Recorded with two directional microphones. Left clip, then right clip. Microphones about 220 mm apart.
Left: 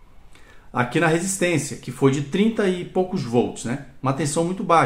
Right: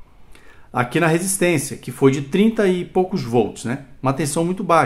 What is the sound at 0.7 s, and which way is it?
Speech, 35° right (ahead or behind).